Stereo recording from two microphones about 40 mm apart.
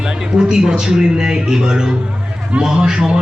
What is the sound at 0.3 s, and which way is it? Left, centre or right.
A man's voice, centre.